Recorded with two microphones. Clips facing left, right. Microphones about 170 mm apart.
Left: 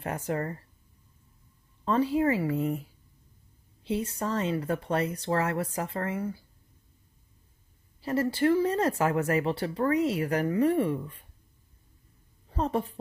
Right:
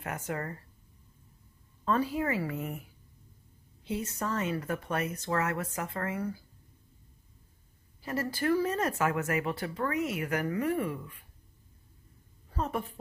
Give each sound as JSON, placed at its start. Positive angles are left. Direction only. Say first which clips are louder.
{"t": 0.0, "sound": "speech", "louder": "left 5 dB", "side_deg": 30}
{"t": 1.9, "sound": "speech", "louder": "left 5 dB", "side_deg": 25}
{"t": 3.8, "sound": "speech", "louder": "left 4 dB", "side_deg": 30}
{"t": 8.0, "sound": "speech", "louder": "left 6 dB", "side_deg": 30}
{"t": 12.5, "sound": "speech", "louder": "left 5 dB", "side_deg": 30}